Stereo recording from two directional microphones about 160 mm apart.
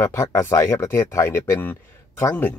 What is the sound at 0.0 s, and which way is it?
Speech, 15° left (ahead or behind).